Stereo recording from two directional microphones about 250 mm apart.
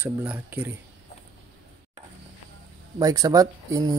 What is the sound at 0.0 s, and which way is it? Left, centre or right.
Speech, centre.